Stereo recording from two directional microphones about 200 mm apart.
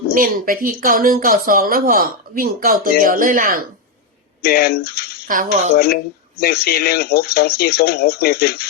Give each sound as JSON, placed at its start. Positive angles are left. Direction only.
{"t": 0.1, "sound": "speech", "side_deg": -45}
{"t": 4.4, "sound": "speech", "side_deg": 50}
{"t": 5.3, "sound": "speech", "side_deg": -40}
{"t": 5.7, "sound": "speech", "side_deg": 50}